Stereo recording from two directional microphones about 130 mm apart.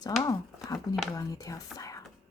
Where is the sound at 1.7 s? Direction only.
25° left (ahead or behind).